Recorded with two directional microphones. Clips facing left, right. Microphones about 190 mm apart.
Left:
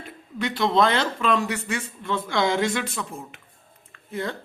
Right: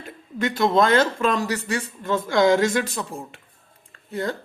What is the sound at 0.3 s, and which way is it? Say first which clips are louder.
Speech: right 2 dB; 45° right (ahead or behind).